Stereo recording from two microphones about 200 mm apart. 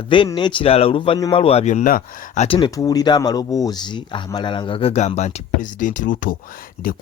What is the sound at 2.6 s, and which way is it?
Speech, 15° left (ahead or behind).